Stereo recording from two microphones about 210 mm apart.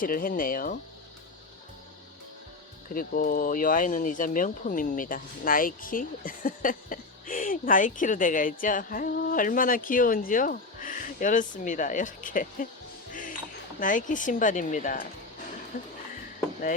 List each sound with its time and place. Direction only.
0.0 s speech: 40° left (ahead or behind)
2.9 s speech: 45° left (ahead or behind)